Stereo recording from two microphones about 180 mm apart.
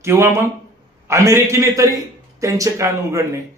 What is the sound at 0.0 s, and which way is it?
A man's voice, 15° right (ahead or behind).